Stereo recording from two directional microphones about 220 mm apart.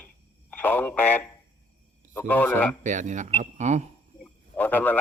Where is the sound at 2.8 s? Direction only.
35° right (ahead or behind).